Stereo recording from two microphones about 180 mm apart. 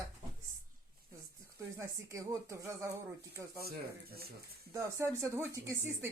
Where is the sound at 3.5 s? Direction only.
60° right (ahead or behind).